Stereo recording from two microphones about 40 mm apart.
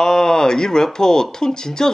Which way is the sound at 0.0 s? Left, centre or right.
Centre.